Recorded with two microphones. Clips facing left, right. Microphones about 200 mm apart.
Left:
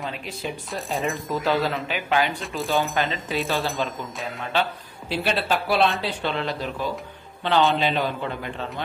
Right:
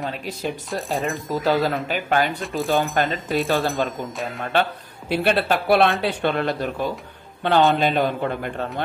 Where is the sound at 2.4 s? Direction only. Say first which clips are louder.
Right 3 dB; centre (ahead or behind).